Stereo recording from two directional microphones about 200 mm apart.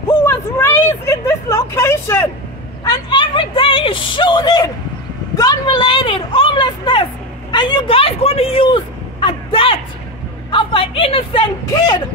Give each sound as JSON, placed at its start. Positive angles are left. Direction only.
{"t": 0.1, "sound": "speech", "side_deg": 10}